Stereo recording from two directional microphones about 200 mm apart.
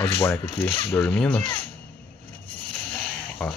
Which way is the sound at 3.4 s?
5° left (ahead or behind).